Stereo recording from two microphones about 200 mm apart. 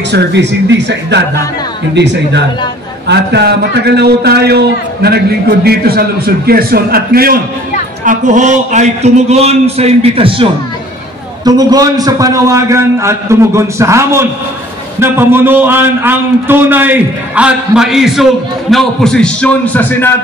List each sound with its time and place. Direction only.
0.1 s speech: 60° right (ahead or behind)
3.1 s a man's voice: 55° right (ahead or behind); by 20.1 s 10° left (ahead or behind)